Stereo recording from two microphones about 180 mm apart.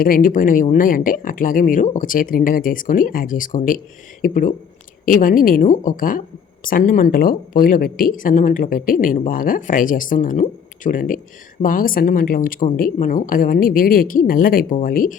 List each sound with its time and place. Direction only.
0.0 s speech: 50° left (ahead or behind)